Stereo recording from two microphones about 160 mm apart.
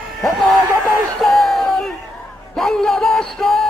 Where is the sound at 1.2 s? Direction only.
Centre (ahead or behind).